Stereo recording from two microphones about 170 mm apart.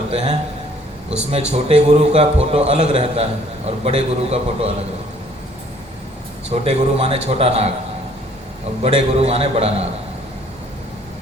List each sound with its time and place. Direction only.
0.1 s speech: 40° right (ahead or behind)
1.5 s speech: 40° right (ahead or behind)
6.5 s speech: 40° right (ahead or behind)
8.8 s speech: 35° right (ahead or behind)